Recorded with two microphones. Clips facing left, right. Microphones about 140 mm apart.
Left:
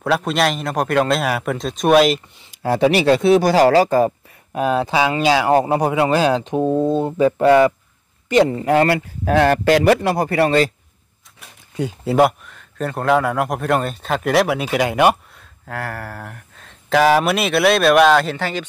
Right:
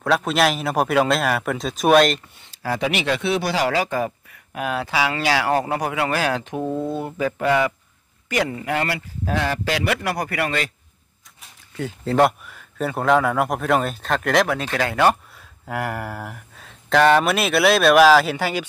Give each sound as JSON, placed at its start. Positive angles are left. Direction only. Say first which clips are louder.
{"t": 0.0, "sound": "speech", "louder": "left 1 dB", "side_deg": 0}
{"t": 2.6, "sound": "speech", "louder": "left 8 dB", "side_deg": 30}
{"t": 10.0, "sound": "speech", "louder": "left 7 dB", "side_deg": 25}
{"t": 11.7, "sound": "speech", "louder": "left 3 dB", "side_deg": 15}
{"t": 12.4, "sound": "speech", "louder": "left 1 dB", "side_deg": -5}
{"t": 15.6, "sound": "speech", "louder": "right 2 dB", "side_deg": -10}